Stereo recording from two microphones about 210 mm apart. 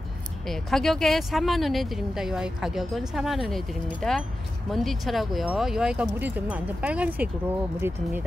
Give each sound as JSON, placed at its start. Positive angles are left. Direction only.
{"t": 0.5, "sound": "speech", "side_deg": 0}